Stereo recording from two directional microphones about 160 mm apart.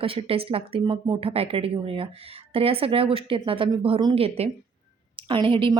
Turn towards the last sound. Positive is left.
turn(degrees=-35)  # may be behind; listen again after turning